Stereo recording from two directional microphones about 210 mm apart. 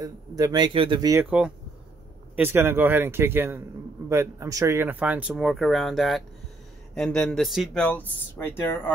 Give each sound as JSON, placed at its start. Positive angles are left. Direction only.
{"t": 0.0, "sound": "speech", "side_deg": -15}
{"t": 2.3, "sound": "speech", "side_deg": -10}